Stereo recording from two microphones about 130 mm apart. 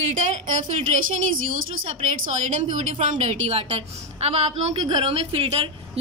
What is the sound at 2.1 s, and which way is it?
Speech, 80° right.